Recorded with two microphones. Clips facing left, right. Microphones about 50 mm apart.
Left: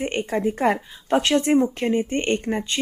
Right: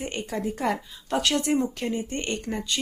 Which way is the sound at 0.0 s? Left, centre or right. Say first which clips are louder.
Left 7 dB; left.